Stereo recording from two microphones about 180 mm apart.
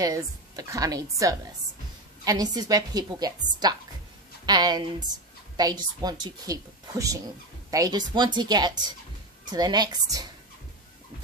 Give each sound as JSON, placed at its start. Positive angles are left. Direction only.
{"t": 0.0, "sound": "speech", "side_deg": -20}